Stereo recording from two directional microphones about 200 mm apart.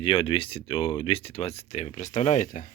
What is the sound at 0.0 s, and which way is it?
Speech, 25° left (ahead or behind).